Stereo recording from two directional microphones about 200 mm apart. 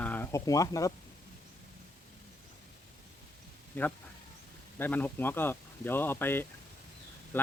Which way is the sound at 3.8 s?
10° left (ahead or behind).